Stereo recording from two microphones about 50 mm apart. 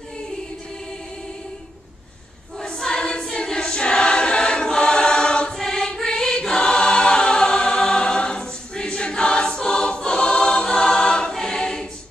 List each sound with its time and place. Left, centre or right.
2.6 s choir: centre